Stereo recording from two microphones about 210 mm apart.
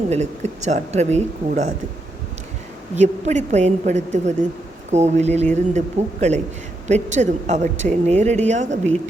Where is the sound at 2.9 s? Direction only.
35° right (ahead or behind).